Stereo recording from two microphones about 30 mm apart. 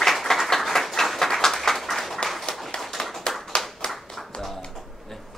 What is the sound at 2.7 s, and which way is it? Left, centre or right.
Clapping, centre.